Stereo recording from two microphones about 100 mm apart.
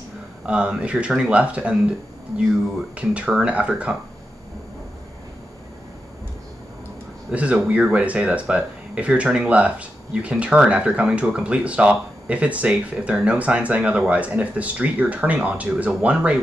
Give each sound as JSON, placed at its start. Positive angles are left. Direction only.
{"t": 0.5, "sound": "speech", "side_deg": -10}
{"t": 3.0, "sound": "speech", "side_deg": -10}
{"t": 7.2, "sound": "speech", "side_deg": -15}